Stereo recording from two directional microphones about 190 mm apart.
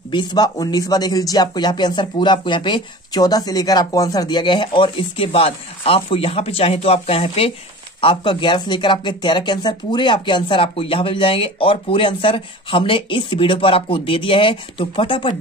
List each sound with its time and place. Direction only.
0.1 s speech: 25° left (ahead or behind)